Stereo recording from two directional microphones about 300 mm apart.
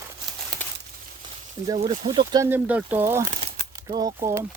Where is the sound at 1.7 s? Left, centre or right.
Centre.